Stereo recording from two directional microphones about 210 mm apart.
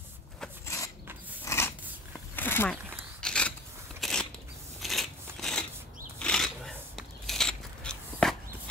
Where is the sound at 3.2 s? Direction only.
5° left (ahead or behind).